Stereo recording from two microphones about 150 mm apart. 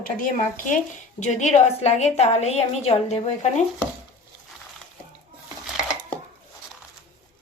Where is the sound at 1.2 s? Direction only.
50° left (ahead or behind).